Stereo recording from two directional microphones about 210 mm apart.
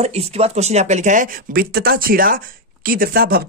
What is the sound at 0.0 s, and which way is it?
Speech, 30° right (ahead or behind).